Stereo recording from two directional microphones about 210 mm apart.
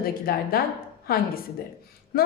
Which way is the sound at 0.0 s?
45° left (ahead or behind).